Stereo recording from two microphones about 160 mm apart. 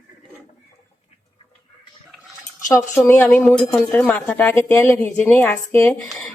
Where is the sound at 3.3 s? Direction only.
5° left (ahead or behind).